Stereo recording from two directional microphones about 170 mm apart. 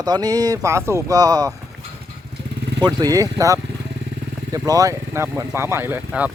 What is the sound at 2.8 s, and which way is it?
Speech, 25° right (ahead or behind).